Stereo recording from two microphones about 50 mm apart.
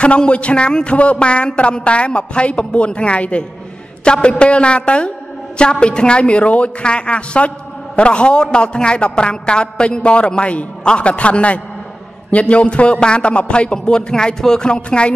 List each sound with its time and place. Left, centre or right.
0.0 s a woman's voice: left